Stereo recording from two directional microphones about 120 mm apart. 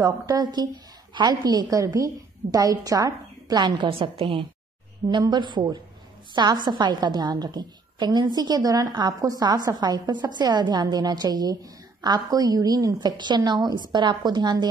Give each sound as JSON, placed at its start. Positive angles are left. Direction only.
{"t": 0.0, "sound": "a woman's voice", "side_deg": -35}
{"t": 5.0, "sound": "a woman's voice", "side_deg": -35}